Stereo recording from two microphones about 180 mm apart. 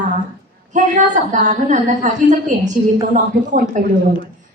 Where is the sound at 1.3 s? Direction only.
45° right (ahead or behind).